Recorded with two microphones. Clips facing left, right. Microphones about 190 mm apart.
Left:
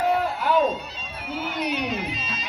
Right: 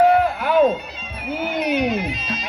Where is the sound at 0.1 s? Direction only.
55° right (ahead or behind).